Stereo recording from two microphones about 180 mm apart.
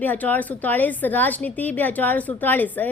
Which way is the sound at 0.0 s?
10° left (ahead or behind).